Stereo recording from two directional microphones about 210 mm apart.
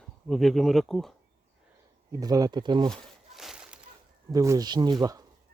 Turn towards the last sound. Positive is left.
turn(degrees=-15)  # may be behind; listen again after turning